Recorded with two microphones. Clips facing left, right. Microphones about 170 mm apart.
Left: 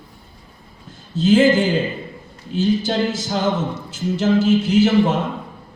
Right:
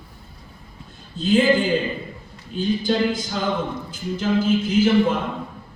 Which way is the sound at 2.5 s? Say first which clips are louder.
Left 2 dB; 85° left.